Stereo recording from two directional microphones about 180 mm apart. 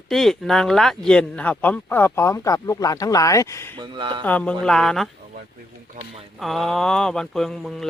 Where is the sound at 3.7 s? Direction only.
25° right (ahead or behind).